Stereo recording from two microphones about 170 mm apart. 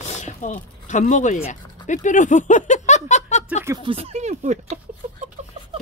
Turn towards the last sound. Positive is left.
turn(degrees=-45)  # may be behind; listen again after turning